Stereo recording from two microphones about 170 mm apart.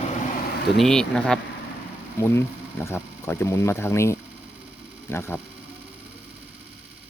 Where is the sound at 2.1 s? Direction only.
15° left (ahead or behind).